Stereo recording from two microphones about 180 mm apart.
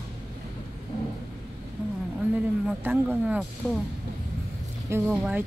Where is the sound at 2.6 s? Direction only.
10° right (ahead or behind).